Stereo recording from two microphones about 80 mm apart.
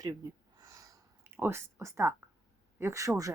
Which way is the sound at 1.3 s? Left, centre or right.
Right.